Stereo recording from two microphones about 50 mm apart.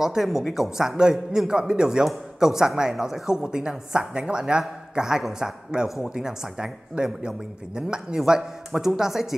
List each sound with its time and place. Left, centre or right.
0.0 s a man's voice: centre
8.2 s speech: centre